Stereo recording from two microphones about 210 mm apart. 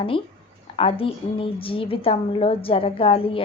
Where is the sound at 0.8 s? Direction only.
25° left (ahead or behind).